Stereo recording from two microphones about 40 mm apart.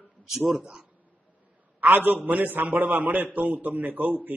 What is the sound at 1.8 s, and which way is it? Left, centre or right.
A man's voice, right.